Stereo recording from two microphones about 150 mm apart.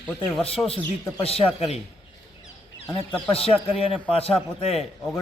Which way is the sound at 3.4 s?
40° left (ahead or behind).